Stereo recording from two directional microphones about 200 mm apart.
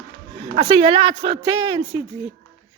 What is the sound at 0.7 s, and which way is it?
Speech, 25° right (ahead or behind).